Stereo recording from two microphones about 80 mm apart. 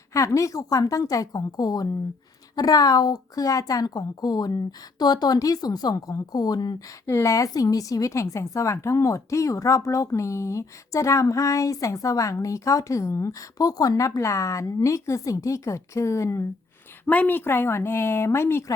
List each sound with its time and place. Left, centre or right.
0.1 s a woman's voice: left
7.1 s a woman's voice: left
17.1 s a woman's voice: left